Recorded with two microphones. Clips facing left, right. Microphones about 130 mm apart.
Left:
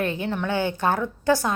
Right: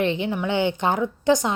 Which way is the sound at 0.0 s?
20° right (ahead or behind).